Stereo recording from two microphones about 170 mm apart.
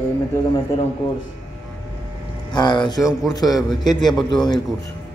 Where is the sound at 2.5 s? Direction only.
25° left (ahead or behind).